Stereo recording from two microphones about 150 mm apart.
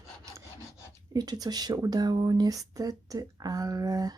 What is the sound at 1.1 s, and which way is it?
Speech, 25° right (ahead or behind).